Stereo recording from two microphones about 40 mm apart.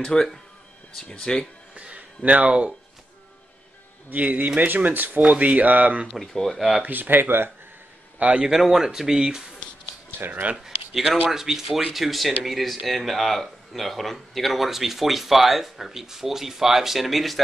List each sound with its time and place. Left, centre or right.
0.0 s speech: centre
1.8 s speech: right
4.1 s speech: right
5.3 s speech: right
6.3 s speech: centre
6.8 s speech: right
8.2 s speech: right
8.5 s speech: centre
10.1 s speech: right
10.5 s speech: centre